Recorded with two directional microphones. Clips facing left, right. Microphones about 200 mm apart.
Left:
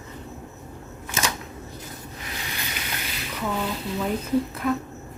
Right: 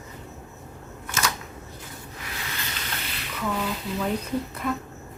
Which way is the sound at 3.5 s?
Centre (ahead or behind).